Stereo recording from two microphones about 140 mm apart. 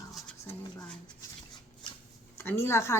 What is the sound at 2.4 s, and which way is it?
Speech, 15° left (ahead or behind).